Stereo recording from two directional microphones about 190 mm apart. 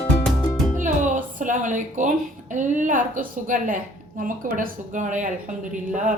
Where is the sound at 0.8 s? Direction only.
45° right (ahead or behind).